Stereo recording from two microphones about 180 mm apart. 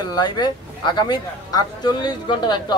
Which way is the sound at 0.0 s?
25° left (ahead or behind).